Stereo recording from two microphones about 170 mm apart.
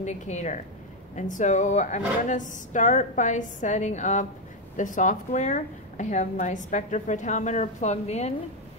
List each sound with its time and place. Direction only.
0.0 s a woman's voice: 45° left (ahead or behind)